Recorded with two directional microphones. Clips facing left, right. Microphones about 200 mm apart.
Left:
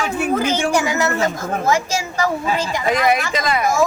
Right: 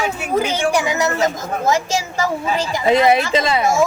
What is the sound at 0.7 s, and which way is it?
A woman's voice, 15° right (ahead or behind).